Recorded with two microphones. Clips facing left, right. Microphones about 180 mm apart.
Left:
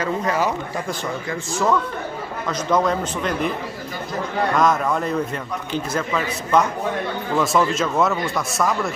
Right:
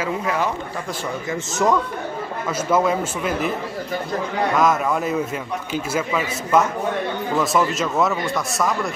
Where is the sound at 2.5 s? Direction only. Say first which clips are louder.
Right 1 dB; 5° right (ahead or behind).